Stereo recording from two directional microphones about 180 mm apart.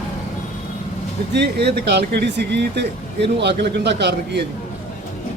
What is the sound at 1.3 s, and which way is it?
Speech, 70° right (ahead or behind).